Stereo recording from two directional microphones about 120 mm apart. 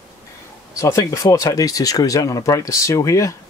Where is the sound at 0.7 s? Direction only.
25° left (ahead or behind).